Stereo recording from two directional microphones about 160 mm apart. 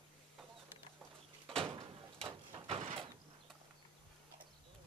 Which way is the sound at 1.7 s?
35° right (ahead or behind).